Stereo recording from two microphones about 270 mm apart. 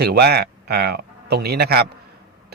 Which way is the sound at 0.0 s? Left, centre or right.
Right.